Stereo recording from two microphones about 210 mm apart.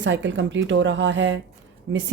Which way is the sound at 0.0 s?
60° right (ahead or behind).